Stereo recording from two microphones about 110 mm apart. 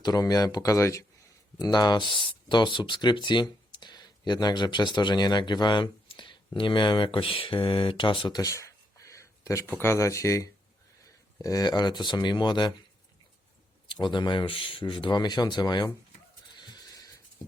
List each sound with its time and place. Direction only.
0.0 s speech: 35° left (ahead or behind)
8.3 s speech: 30° left (ahead or behind)
13.8 s speech: 45° left (ahead or behind)
16.6 s a sound: 40° left (ahead or behind)